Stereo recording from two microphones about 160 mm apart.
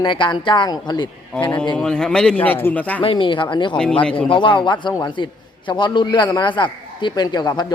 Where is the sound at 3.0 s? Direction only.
30° left (ahead or behind).